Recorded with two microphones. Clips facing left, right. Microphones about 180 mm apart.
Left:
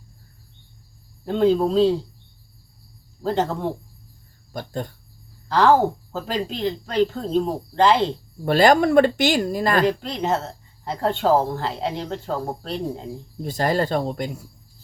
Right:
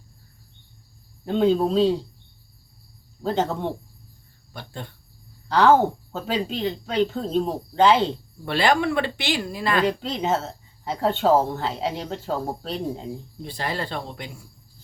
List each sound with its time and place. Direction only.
1.2 s speech: centre (ahead or behind)
3.2 s speech: centre (ahead or behind)
4.5 s speech: 40° left (ahead or behind)
5.5 s speech: centre (ahead or behind)
8.4 s speech: 45° left (ahead or behind)
9.8 s speech: centre (ahead or behind)
13.4 s speech: 45° left (ahead or behind)